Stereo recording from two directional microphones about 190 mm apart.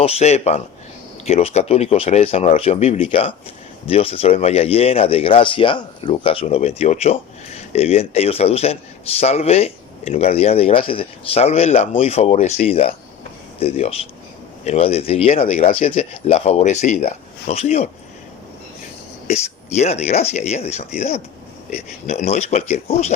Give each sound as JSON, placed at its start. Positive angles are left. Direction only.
{"t": 0.0, "sound": "speech", "side_deg": 35}
{"t": 19.3, "sound": "speech", "side_deg": 35}